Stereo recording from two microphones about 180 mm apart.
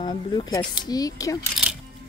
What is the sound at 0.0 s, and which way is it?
Speech, 25° left (ahead or behind).